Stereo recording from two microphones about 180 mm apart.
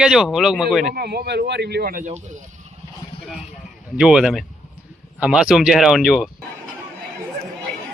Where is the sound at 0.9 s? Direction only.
65° right (ahead or behind); by 2.4 s 40° right (ahead or behind).